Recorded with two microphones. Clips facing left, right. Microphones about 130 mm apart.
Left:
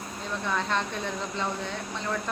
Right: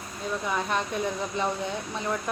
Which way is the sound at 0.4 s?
10° right (ahead or behind).